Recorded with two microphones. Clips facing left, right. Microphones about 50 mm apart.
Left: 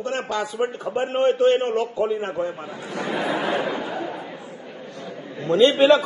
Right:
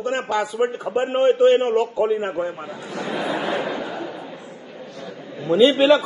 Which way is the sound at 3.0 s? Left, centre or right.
Left.